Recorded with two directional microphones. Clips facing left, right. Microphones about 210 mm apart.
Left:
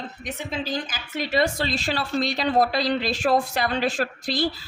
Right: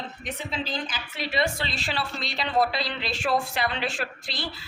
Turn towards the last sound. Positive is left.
turn(degrees=40)  # may be behind; listen again after turning